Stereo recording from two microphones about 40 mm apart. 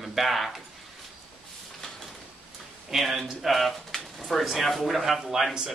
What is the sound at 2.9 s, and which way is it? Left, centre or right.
Speech, centre.